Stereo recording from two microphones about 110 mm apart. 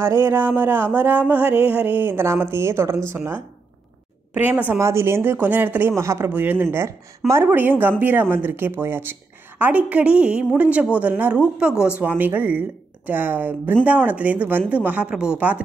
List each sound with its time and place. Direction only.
0.0 s a woman's voice: 20° right (ahead or behind)